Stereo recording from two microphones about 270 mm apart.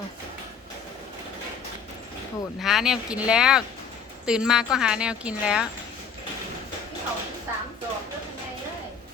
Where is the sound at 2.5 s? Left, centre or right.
Centre.